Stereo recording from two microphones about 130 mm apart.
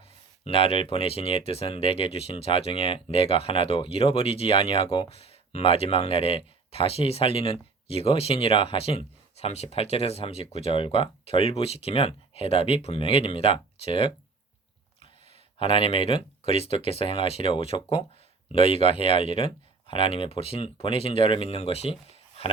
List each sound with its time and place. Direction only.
0.4 s speech: 45° left (ahead or behind)
15.5 s speech: 45° left (ahead or behind)